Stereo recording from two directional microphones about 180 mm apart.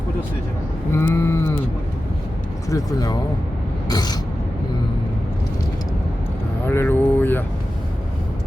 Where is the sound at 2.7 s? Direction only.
20° left (ahead or behind).